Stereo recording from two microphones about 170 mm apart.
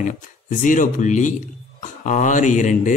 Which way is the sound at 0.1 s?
50° left (ahead or behind).